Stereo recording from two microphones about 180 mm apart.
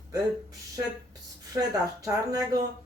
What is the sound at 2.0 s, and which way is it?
Speech, 20° right (ahead or behind).